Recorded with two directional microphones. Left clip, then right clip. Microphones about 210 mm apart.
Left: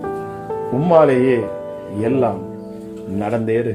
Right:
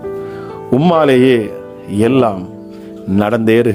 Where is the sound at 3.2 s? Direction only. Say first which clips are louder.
Right 7 dB; 40° right (ahead or behind).